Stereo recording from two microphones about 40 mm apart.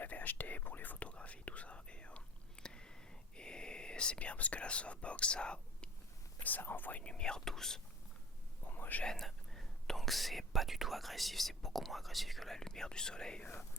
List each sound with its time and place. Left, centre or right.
0.0 s whispering: left
1.0 s whispering: left
6.4 s speech: left
7.0 s speech: left
8.6 s whispering: left
9.2 s speech: centre
12.5 s speech: centre